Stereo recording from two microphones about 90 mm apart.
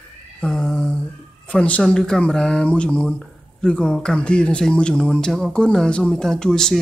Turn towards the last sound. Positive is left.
turn(degrees=5)  # may be behind; listen again after turning